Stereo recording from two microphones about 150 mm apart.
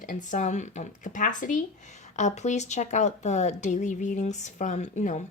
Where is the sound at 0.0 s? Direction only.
60° left (ahead or behind).